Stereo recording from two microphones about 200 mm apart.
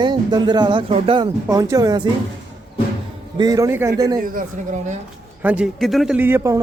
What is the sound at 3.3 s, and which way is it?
Speech, 20° right (ahead or behind).